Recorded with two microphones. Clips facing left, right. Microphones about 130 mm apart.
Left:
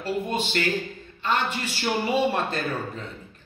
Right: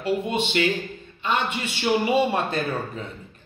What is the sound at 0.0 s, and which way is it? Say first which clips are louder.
A man's voice: right 3 dB; centre (ahead or behind).